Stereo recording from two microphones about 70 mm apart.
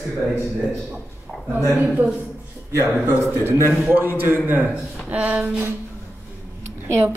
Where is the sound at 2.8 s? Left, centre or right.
Right.